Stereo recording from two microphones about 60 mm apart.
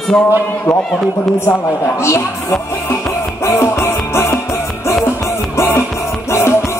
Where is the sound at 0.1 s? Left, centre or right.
Centre.